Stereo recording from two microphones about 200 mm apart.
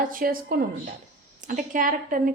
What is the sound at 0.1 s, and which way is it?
A woman's voice, 45° right (ahead or behind).